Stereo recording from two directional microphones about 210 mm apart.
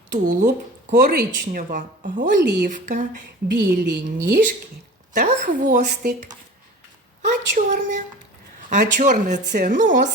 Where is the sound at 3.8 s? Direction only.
55° right (ahead or behind).